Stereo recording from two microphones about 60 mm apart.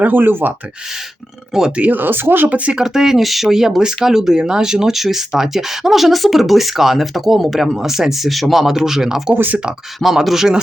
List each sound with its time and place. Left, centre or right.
0.0 s speech: right
1.5 s speech: centre
1.8 s speech: right
2.5 s speech: right
2.8 s speech: centre
9.3 s speech: right
10.0 s speech: centre